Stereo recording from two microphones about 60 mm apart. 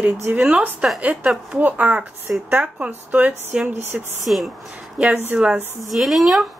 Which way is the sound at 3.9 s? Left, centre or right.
Centre.